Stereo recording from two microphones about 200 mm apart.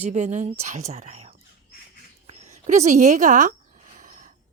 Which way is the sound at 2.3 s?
35° right (ahead or behind).